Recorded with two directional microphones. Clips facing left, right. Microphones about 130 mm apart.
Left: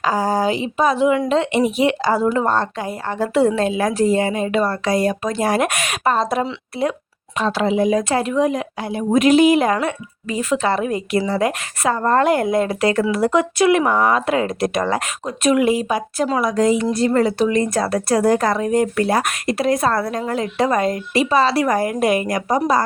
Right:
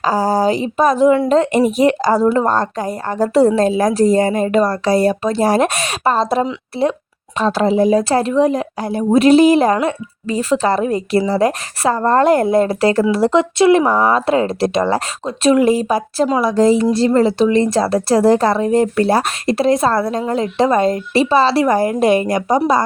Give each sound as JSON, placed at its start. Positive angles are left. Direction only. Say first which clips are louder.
{"t": 0.0, "sound": "a woman's voice", "louder": "right 3 dB", "side_deg": -35}